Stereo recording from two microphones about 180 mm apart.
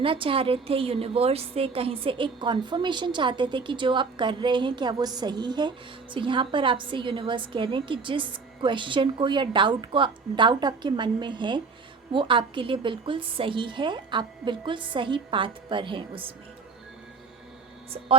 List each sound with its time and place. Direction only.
0.0 s a woman's voice: 30° right (ahead or behind)